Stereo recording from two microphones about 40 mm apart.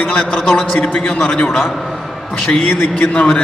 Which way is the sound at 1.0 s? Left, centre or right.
Centre.